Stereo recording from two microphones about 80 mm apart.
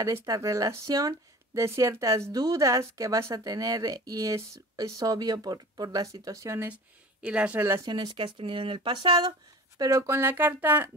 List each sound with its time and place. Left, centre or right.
0.0 s speech: right
6.7 s speech: centre
7.8 s speech: right
9.8 s speech: right